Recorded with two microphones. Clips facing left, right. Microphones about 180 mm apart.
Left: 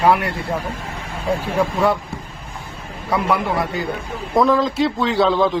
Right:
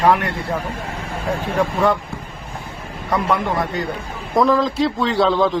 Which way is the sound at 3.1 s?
10° left (ahead or behind).